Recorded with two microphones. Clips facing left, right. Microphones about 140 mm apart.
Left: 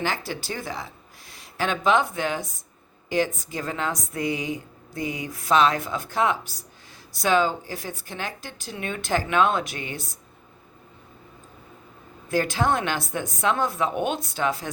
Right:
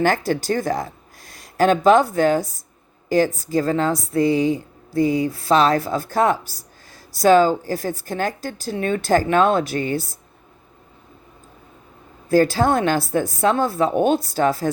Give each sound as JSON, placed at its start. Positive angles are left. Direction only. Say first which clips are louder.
{"t": 0.0, "sound": "speech", "louder": "right 9 dB", "side_deg": -45}
{"t": 12.3, "sound": "speech", "louder": "right 7 dB", "side_deg": -35}